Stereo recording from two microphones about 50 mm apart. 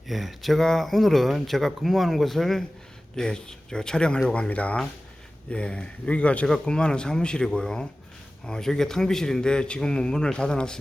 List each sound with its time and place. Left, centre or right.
0.1 s a man's voice: centre